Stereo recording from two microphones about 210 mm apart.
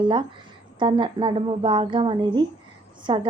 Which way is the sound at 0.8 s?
25° right (ahead or behind).